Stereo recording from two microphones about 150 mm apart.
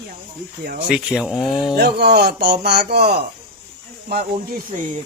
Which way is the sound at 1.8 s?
90° right.